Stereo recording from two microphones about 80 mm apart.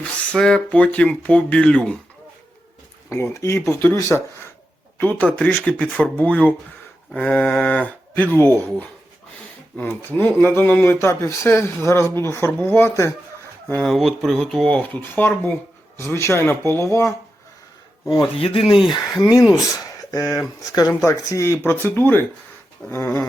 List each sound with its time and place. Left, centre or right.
0.0 s speech: centre
3.1 s speech: left
4.9 s speech: left
9.9 s speech: left
12.9 s speech: left
13.8 s speech: centre
14.7 s speech: centre
15.0 s speech: left
18.1 s speech: left
19.2 s speech: left
19.6 s a sound: left
20.2 s speech: left
22.8 s speech: centre